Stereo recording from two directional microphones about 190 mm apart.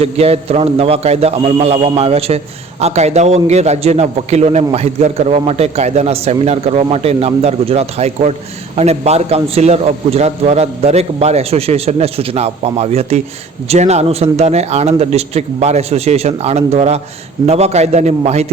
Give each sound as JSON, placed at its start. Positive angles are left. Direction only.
{"t": 0.0, "sound": "a man's voice", "side_deg": -30}